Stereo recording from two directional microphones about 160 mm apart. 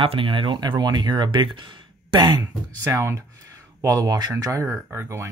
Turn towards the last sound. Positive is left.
turn(degrees=-15)  # may be behind; listen again after turning